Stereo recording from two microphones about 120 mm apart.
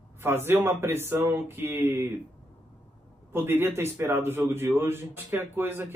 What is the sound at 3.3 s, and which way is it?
A man's voice, 20° right (ahead or behind).